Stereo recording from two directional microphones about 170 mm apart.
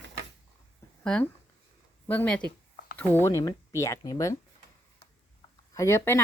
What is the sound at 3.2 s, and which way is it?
Speech, 20° left (ahead or behind).